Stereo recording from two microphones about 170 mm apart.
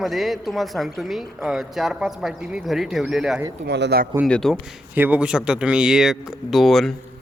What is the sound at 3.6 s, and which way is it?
Speech, 85° right.